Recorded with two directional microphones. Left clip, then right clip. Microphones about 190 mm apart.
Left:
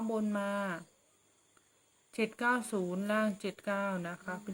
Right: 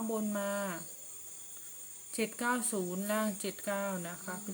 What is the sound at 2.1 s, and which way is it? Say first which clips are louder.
Speech: left 2 dB; 15° left (ahead or behind).